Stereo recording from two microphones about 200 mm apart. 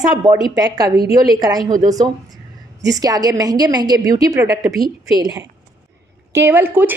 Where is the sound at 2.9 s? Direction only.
20° right (ahead or behind).